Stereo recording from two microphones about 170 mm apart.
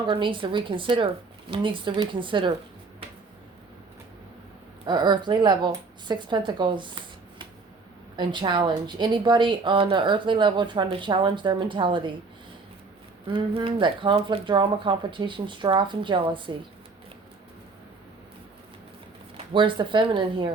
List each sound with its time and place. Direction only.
0.0 s a woman's voice: 30° right (ahead or behind)
4.9 s a woman's voice: 25° right (ahead or behind)
13.2 s a woman's voice: 30° right (ahead or behind)
19.5 s a woman's voice: 30° right (ahead or behind)